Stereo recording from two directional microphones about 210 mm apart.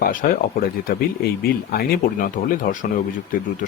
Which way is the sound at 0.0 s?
40° left (ahead or behind).